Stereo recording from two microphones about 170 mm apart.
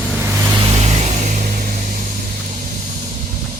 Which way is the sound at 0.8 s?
40° right (ahead or behind).